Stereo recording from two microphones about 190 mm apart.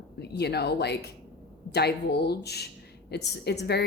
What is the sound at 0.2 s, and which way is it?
A woman's voice, 60° left (ahead or behind).